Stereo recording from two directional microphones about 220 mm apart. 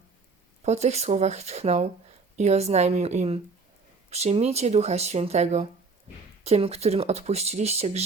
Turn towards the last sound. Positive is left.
turn(degrees=-30)  # may be behind; listen again after turning